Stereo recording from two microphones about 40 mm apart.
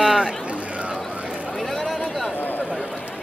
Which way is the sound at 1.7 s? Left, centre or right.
Centre.